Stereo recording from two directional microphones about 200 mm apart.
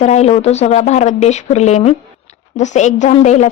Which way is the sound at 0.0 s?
35° left (ahead or behind).